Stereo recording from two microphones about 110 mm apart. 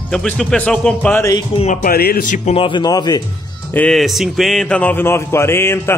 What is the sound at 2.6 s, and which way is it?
Speech, 45° left (ahead or behind).